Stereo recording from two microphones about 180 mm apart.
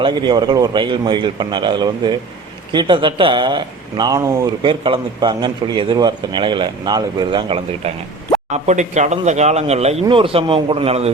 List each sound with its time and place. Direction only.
0.0 s speech: 25° right (ahead or behind)
8.5 s speech: 40° right (ahead or behind)